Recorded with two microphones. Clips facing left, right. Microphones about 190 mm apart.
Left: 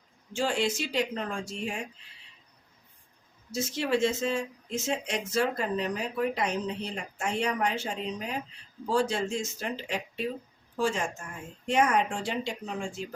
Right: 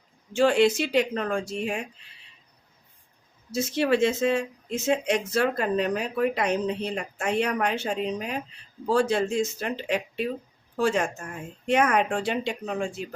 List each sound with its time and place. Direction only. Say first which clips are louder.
0.3 s speech: right 8 dB; 65° right (ahead or behind)
3.5 s speech: right 5 dB; 65° right (ahead or behind)